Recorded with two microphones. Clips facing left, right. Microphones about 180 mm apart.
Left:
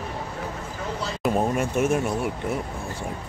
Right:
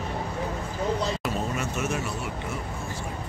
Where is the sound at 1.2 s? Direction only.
55° left (ahead or behind).